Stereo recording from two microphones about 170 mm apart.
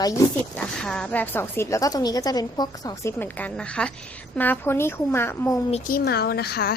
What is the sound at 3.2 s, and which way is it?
A woman's voice, 10° left (ahead or behind).